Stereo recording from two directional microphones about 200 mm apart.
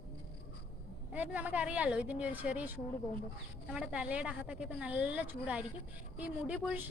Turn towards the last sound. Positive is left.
turn(degrees=-5)  # may be behind; listen again after turning